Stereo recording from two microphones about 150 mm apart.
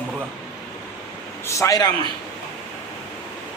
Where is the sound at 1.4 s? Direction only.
20° left (ahead or behind).